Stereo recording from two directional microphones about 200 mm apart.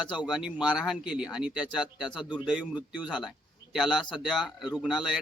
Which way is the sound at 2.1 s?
20° left (ahead or behind).